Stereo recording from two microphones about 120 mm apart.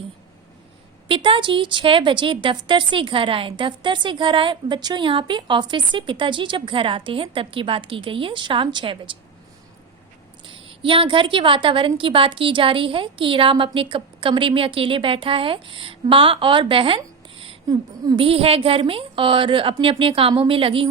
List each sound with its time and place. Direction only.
1.0 s a woman's voice: 45° right (ahead or behind)
10.4 s a woman's voice: 45° right (ahead or behind)
17.7 s speech: 30° right (ahead or behind)
18.2 s a woman's voice: 50° right (ahead or behind)